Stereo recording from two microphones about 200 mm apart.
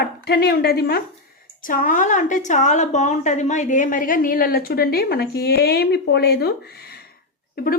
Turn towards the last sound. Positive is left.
turn(degrees=45)  # may be behind; listen again after turning